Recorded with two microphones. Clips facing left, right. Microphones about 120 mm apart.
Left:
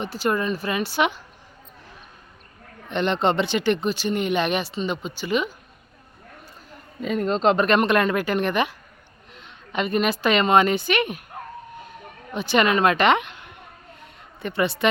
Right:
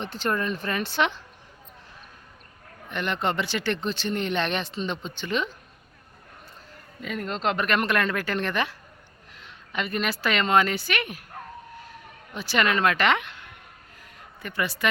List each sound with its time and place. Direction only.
0.0 s speech: 10° left (ahead or behind)
2.9 s speech: 25° left (ahead or behind); by 5.5 s 10° left (ahead or behind)
7.0 s a woman's voice: 25° left (ahead or behind)
11.8 s a sound: 20° left (ahead or behind)